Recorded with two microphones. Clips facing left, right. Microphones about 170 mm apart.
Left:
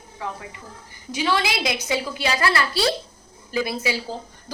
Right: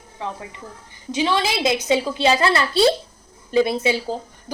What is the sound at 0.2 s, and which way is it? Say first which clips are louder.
A woman's voice: right 2 dB; 20° right (ahead or behind).